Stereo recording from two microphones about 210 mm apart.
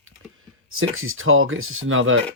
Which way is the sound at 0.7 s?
75° right (ahead or behind).